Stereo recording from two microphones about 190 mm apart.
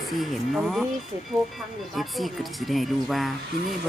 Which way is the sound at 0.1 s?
Centre (ahead or behind).